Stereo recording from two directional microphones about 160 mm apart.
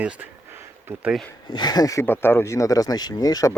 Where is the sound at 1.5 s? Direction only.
25° left (ahead or behind).